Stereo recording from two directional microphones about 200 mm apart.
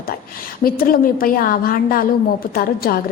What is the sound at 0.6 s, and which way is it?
A woman's voice, 45° left (ahead or behind).